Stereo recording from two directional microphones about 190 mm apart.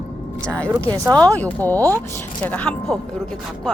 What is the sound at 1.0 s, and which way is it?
Speech, 15° right (ahead or behind).